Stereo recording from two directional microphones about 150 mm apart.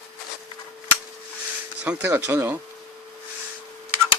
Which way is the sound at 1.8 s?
10° right (ahead or behind).